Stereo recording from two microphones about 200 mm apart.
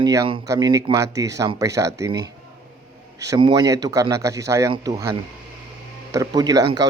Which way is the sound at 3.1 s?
20° right (ahead or behind).